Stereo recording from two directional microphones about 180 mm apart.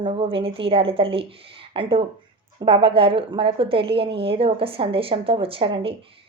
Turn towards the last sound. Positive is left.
turn(degrees=-30)  # may be behind; listen again after turning